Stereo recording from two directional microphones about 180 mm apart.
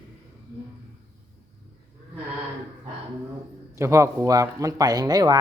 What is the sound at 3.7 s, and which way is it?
Speech, 15° right (ahead or behind).